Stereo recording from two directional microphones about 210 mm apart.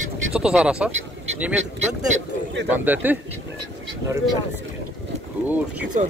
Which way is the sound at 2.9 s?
10° right (ahead or behind).